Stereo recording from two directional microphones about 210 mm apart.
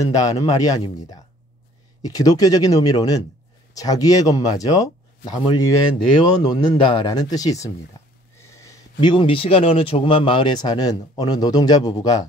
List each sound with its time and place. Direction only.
0.0 s speech: 15° left (ahead or behind)
8.4 s a sound: 15° left (ahead or behind)
9.0 s speech: 25° left (ahead or behind)